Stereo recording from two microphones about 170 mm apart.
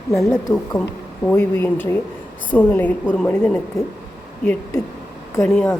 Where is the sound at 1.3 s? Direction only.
15° left (ahead or behind).